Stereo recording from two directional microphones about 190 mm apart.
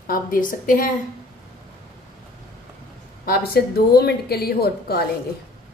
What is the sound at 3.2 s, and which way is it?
Speech, 50° left (ahead or behind).